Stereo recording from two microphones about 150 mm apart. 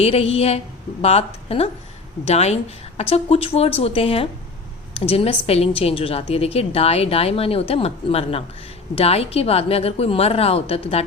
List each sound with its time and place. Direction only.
0.0 s a woman's voice: 45° left (ahead or behind)